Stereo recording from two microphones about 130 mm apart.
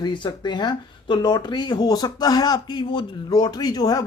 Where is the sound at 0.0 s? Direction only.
35° left (ahead or behind).